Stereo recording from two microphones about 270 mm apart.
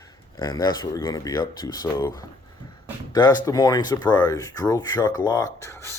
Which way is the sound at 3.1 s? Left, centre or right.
Centre.